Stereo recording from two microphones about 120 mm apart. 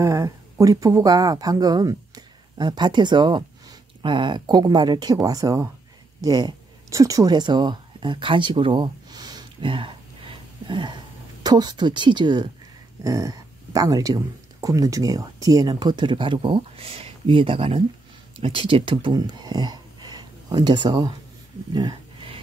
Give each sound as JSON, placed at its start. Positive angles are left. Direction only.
{"t": 0.0, "sound": "speech", "side_deg": -25}
{"t": 13.0, "sound": "speech", "side_deg": -25}
{"t": 21.7, "sound": "a sound", "side_deg": -45}